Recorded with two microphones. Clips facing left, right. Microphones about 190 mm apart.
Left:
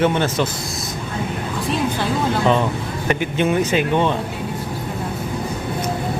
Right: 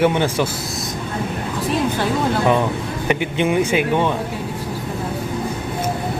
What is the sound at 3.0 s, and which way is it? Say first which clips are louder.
A man's voice: even; 15° right (ahead or behind).